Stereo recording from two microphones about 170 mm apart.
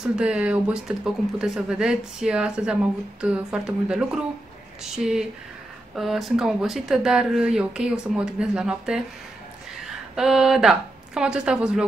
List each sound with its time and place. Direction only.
0.1 s speech: 5° right (ahead or behind)
10.1 s speech: centre (ahead or behind)